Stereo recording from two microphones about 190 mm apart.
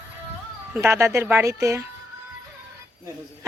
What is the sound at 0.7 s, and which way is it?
Speech, 15° right (ahead or behind).